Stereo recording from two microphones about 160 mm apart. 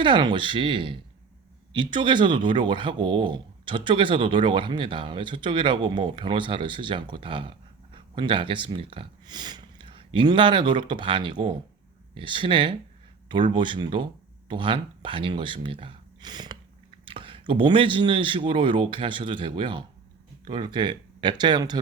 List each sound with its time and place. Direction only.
0.0 s speech: 30° right (ahead or behind)